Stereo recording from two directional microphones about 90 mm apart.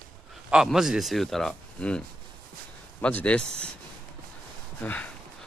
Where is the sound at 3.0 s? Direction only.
15° left (ahead or behind).